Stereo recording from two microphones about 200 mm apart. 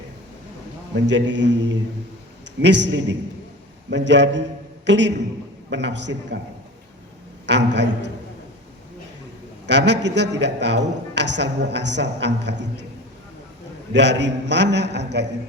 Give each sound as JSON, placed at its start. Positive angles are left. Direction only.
{"t": 0.9, "sound": "a man's voice", "side_deg": -65}
{"t": 2.6, "sound": "a man's voice", "side_deg": -60}
{"t": 7.4, "sound": "a man's voice", "side_deg": -60}
{"t": 9.6, "sound": "a man's voice", "side_deg": -60}
{"t": 13.9, "sound": "a man's voice", "side_deg": -60}